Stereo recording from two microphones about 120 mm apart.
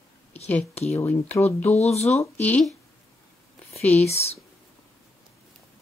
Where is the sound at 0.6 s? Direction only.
60° left (ahead or behind).